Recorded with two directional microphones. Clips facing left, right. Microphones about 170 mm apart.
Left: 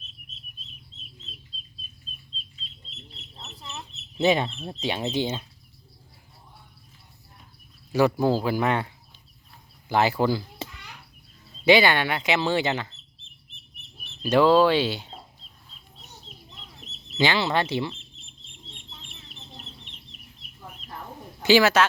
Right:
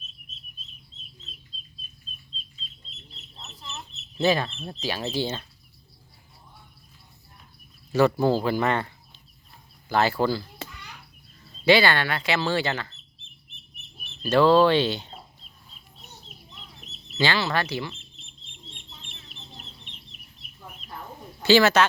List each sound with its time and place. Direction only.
4.2 s speech: 20° left (ahead or behind)
4.4 s speech: 10° left (ahead or behind)
4.8 s speech: 25° left (ahead or behind)
7.9 s speech: 10° left (ahead or behind)
9.9 s speech: 15° left (ahead or behind)
11.6 s speech: 15° left (ahead or behind)
14.2 s speech: 15° left (ahead or behind)
17.2 s speech: 20° left (ahead or behind)
21.4 s speech: 10° left (ahead or behind)